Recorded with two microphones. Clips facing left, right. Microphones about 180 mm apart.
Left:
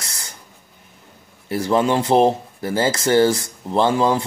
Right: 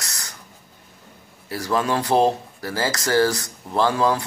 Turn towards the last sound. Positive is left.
turn(degrees=25)  # may be behind; listen again after turning